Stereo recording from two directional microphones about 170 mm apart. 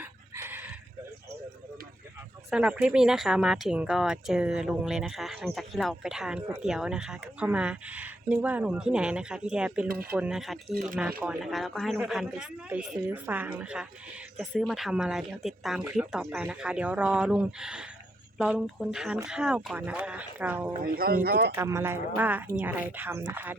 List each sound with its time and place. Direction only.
0.0 s chicken: 10° right (ahead or behind)
2.5 s speech: 5° right (ahead or behind)
10.7 s speech: 55° right (ahead or behind)
11.2 s speech: 5° right (ahead or behind)
20.8 s speech: 60° right (ahead or behind)
21.5 s speech: 15° right (ahead or behind)